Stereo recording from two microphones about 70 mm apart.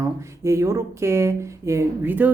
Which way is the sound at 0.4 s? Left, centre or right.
Right.